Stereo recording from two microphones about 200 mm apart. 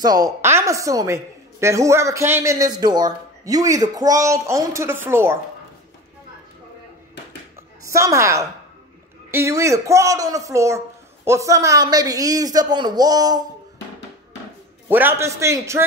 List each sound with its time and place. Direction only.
0.0 s a woman's voice: 20° right (ahead or behind)
7.8 s a woman's voice: 15° right (ahead or behind)
14.9 s a woman's voice: 10° right (ahead or behind)